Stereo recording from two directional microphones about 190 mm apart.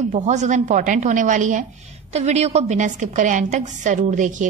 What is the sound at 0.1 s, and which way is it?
A woman's voice, 40° right (ahead or behind).